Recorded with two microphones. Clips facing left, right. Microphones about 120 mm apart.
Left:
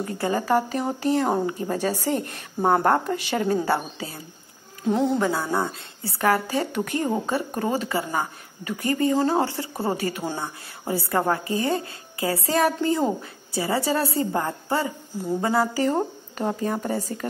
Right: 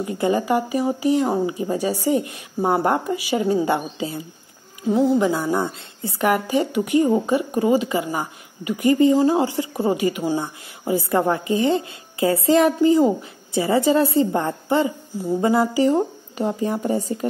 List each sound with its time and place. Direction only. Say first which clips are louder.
0.0 s a woman's voice: right 4 dB; 20° right (ahead or behind)
4.8 s speech: right 4 dB; 5° right (ahead or behind)
5.2 s a woman's voice: right 3 dB; 20° right (ahead or behind)